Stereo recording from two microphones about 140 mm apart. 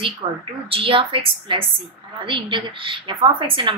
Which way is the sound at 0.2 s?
35° right (ahead or behind).